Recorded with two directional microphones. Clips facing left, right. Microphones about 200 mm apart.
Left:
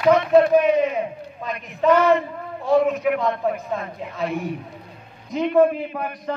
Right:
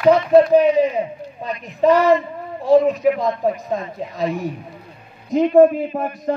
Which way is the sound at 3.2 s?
35° right (ahead or behind).